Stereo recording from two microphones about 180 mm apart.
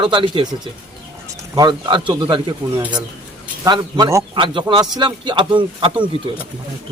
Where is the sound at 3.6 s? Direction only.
25° right (ahead or behind).